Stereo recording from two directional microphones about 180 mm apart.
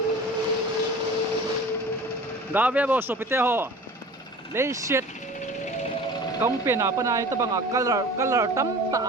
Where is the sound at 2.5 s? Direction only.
10° right (ahead or behind).